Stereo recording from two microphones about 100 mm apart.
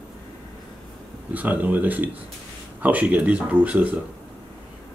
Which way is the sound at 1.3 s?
15° right (ahead or behind).